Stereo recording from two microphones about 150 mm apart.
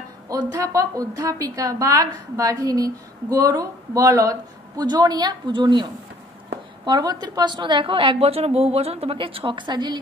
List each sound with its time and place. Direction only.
0.3 s a woman's voice: 25° right (ahead or behind)
6.9 s a woman's voice: 25° right (ahead or behind)